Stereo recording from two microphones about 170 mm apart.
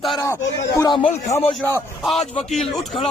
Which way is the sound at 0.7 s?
25° left (ahead or behind).